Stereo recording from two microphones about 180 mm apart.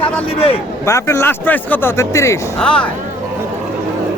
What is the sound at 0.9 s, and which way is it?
Speech, 15° left (ahead or behind).